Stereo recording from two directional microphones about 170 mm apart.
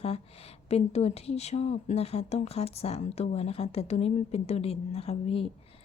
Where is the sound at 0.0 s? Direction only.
35° left (ahead or behind).